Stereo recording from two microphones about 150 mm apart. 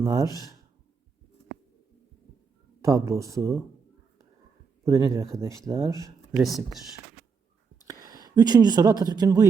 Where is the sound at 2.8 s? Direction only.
20° right (ahead or behind).